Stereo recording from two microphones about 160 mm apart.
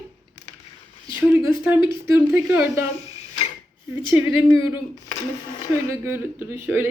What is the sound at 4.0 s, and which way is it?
Speech, 30° left (ahead or behind).